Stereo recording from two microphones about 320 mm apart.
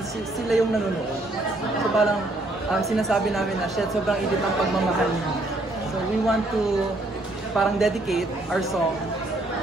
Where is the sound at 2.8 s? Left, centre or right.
Centre.